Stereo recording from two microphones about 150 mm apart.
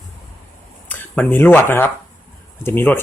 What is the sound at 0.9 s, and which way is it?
Speech, 10° left (ahead or behind).